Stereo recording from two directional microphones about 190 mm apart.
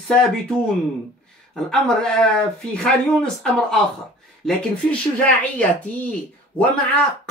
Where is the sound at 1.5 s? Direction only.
5° left (ahead or behind).